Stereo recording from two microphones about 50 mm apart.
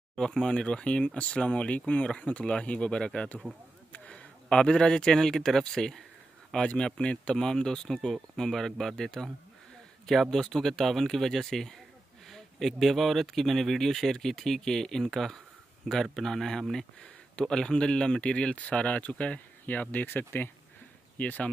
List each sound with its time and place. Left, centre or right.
0.1 s speech: centre
10.3 s speech: centre; by 19.4 s left
19.6 s speech: left
21.2 s speech: left